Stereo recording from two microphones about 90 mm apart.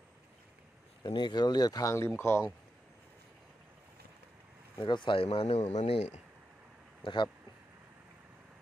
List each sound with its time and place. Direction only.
1.0 s speech: 55° left (ahead or behind); by 2.4 s 30° left (ahead or behind)
4.7 s speech: 60° left (ahead or behind); by 5.9 s 90° left